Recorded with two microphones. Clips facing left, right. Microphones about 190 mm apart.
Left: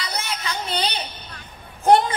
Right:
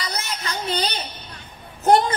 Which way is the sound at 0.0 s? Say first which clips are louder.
Even; 45° right (ahead or behind).